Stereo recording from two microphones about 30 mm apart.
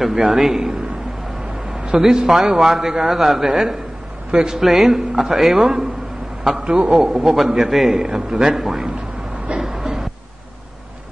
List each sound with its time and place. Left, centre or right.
0.1 s a man's voice: centre
1.8 s a sound: right
2.2 s a man's voice: centre
3.1 s a man's voice: centre
8.0 s a man's voice: centre
9.6 s a sound: centre